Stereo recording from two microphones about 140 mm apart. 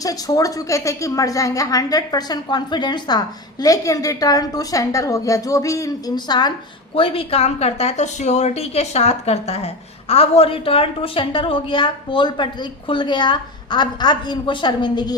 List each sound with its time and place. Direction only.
0.0 s a woman's voice: 25° left (ahead or behind)
6.9 s a woman's voice: 40° left (ahead or behind)